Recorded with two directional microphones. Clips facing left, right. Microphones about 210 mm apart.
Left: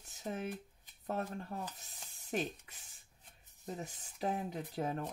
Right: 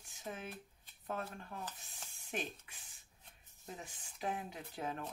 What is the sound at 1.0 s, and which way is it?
Speech, 40° left (ahead or behind).